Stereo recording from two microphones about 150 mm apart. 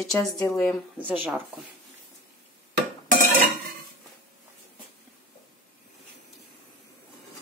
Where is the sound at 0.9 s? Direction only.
10° right (ahead or behind).